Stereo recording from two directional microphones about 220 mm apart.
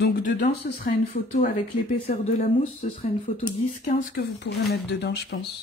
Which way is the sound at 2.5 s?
25° left (ahead or behind).